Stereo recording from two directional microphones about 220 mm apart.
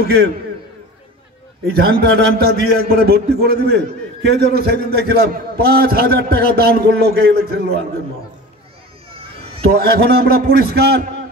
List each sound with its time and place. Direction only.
0.0 s a man's voice: 45° right (ahead or behind)
1.7 s a man's voice: 45° right (ahead or behind)
9.7 s a man's voice: 45° right (ahead or behind)